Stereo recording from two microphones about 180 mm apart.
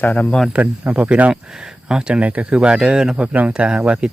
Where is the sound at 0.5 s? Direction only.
10° right (ahead or behind).